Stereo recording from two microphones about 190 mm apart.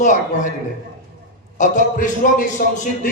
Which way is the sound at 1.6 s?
40° left (ahead or behind).